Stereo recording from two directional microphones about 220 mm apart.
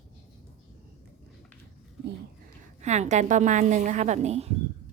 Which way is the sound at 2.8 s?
30° right (ahead or behind).